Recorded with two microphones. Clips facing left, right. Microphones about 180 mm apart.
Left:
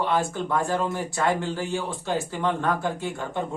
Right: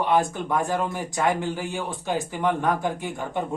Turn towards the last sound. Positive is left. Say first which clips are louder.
# even
turn(degrees=-15)  # may be behind; listen again after turning